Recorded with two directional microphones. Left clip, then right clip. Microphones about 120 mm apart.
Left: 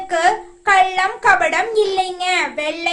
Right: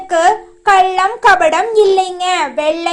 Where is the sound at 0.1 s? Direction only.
30° right (ahead or behind).